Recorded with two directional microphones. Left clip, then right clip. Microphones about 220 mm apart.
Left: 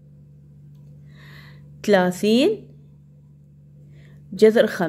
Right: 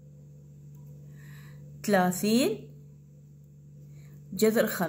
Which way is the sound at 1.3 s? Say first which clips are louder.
Left 6 dB; 40° left (ahead or behind).